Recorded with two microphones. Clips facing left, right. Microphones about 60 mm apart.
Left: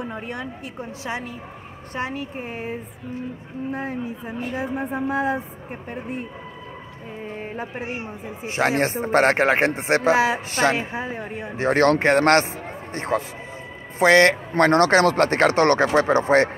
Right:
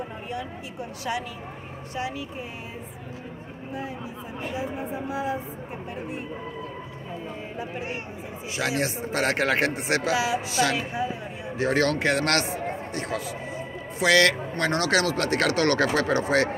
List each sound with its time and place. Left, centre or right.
0.1 s a woman's voice: left
2.0 s a woman's voice: left
7.5 s a woman's voice: left
14.6 s a man's voice: left